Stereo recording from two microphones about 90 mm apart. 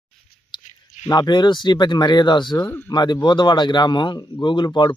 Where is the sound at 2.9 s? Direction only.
55° left (ahead or behind).